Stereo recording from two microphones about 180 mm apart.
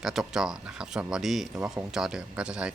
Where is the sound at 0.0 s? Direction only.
Centre (ahead or behind).